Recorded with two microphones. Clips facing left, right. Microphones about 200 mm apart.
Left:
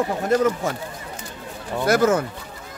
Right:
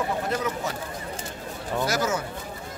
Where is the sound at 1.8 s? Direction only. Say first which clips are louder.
Left 9 dB; 55° left (ahead or behind).